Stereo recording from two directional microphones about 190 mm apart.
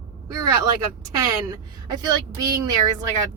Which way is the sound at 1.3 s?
20° right (ahead or behind).